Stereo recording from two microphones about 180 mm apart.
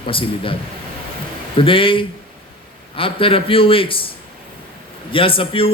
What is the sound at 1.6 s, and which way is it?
A man's voice, 30° left (ahead or behind).